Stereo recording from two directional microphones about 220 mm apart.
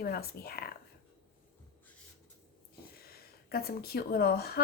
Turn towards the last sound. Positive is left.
turn(degrees=45)  # may be behind; listen again after turning